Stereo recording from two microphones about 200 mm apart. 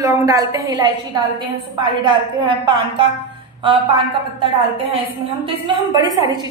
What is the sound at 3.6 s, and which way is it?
Speech, 25° right (ahead or behind).